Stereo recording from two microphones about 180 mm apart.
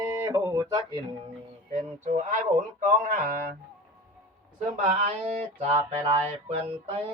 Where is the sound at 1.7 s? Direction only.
40° right (ahead or behind).